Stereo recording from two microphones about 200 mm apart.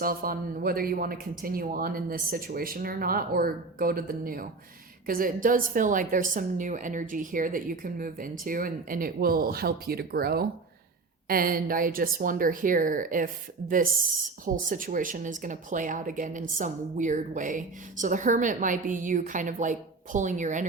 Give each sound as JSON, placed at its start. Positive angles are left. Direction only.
{"t": 0.0, "sound": "a woman's voice", "side_deg": -45}